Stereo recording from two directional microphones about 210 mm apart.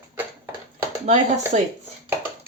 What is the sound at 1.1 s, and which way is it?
Speech, 35° right (ahead or behind).